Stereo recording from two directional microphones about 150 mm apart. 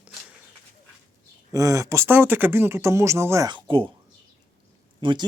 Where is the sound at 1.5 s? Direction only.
20° right (ahead or behind).